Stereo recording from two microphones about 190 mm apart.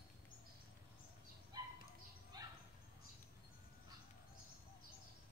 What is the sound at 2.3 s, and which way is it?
Dog, 20° right (ahead or behind).